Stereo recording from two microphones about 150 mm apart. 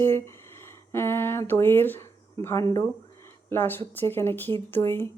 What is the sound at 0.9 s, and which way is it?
Speech, 15° left (ahead or behind).